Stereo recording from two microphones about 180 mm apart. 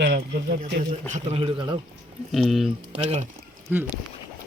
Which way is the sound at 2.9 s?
35° right (ahead or behind).